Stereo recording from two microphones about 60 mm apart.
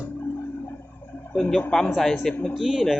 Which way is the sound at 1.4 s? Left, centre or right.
Centre.